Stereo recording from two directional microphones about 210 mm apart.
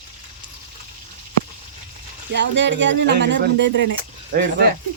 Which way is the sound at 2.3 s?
55° right (ahead or behind).